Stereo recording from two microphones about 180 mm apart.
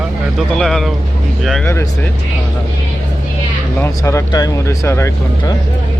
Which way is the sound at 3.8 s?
15° left (ahead or behind).